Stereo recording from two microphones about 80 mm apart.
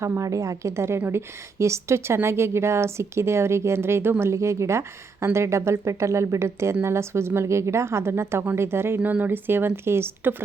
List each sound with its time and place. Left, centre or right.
0.0 s a woman's voice: right
9.0 s a woman's voice: centre